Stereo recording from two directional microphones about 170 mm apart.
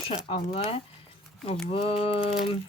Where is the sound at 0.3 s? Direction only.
35° left (ahead or behind).